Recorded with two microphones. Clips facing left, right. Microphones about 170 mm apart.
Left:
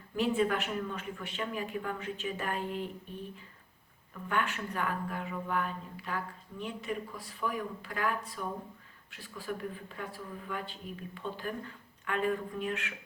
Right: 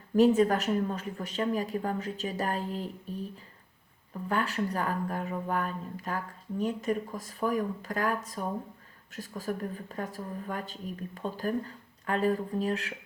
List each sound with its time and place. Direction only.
0.2 s speech: 40° right (ahead or behind)